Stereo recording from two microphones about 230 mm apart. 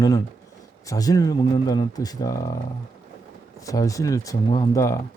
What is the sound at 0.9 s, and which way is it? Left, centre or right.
Speech, centre.